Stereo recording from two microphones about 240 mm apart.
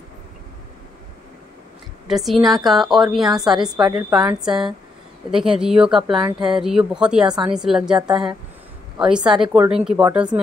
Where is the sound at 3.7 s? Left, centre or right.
Centre.